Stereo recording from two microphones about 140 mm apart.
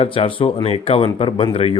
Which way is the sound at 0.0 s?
40° left (ahead or behind).